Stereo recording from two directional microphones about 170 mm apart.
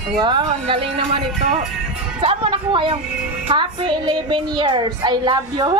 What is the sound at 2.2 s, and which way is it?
Speech, 30° right (ahead or behind).